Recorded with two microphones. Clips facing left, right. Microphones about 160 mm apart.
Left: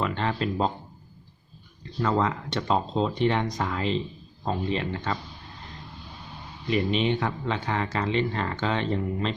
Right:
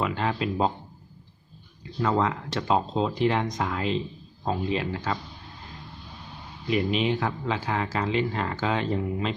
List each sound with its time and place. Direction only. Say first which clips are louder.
0.0 s speech: even; 5° right (ahead or behind)
1.8 s speech: even; 5° right (ahead or behind)
6.7 s speech: even; 5° right (ahead or behind)